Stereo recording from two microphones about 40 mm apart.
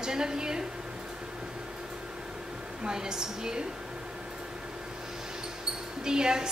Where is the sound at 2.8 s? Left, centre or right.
Centre.